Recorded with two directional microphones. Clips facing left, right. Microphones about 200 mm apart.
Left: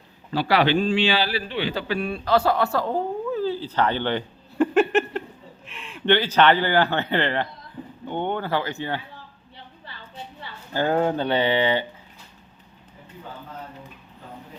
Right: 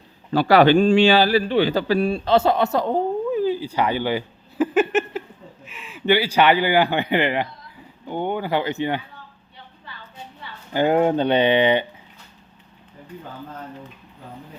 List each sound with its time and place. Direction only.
0.3 s a man's voice: 45° right (ahead or behind); by 9.0 s 20° right (ahead or behind)
10.8 s a man's voice: 15° right (ahead or behind)